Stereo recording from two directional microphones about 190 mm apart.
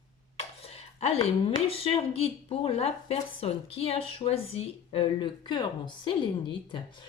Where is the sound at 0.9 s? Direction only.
35° left (ahead or behind).